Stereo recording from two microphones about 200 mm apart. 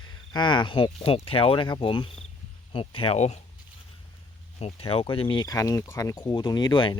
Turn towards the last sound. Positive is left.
turn(degrees=20)  # may be behind; listen again after turning